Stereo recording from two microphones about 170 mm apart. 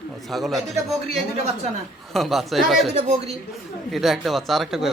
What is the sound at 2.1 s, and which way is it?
Speech, centre (ahead or behind).